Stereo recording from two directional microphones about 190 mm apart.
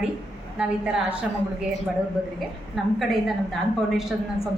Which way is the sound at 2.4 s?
Centre (ahead or behind).